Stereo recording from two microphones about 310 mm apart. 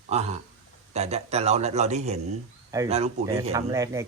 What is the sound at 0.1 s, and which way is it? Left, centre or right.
A man's voice, right.